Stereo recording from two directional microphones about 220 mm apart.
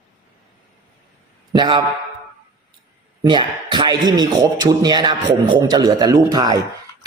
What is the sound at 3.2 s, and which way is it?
A man's voice, 20° right (ahead or behind).